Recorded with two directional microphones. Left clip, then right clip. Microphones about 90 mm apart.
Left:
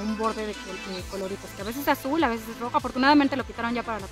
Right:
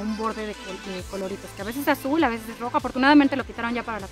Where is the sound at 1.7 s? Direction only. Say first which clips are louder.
Right 2 dB; 30° left (ahead or behind).